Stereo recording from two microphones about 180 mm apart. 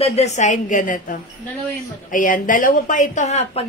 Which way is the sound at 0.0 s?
35° left (ahead or behind).